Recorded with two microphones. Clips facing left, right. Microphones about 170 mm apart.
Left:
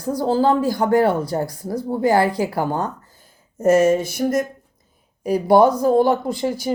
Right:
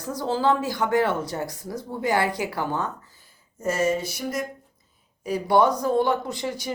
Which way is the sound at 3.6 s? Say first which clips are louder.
Left 9 dB; 50° left (ahead or behind).